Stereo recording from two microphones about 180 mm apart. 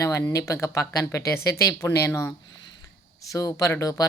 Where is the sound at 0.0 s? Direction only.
15° left (ahead or behind).